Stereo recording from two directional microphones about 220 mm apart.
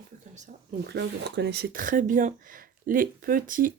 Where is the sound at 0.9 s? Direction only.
50° right (ahead or behind).